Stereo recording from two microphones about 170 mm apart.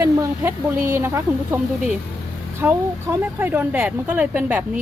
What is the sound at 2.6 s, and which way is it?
A woman's voice, 15° right (ahead or behind).